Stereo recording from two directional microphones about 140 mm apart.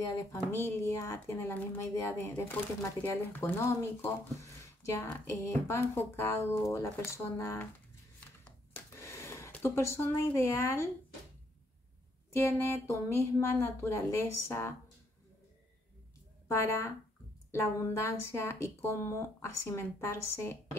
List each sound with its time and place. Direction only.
0.1 s speech: 20° left (ahead or behind)
8.7 s a sound: 20° left (ahead or behind)
12.3 s speech: 20° left (ahead or behind)
16.4 s speech: 20° left (ahead or behind)